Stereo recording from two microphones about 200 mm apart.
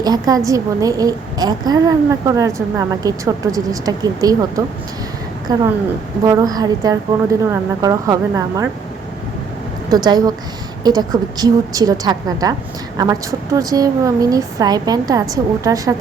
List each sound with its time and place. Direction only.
0.0 s a woman's voice: 20° right (ahead or behind)
9.9 s a woman's voice: 20° right (ahead or behind)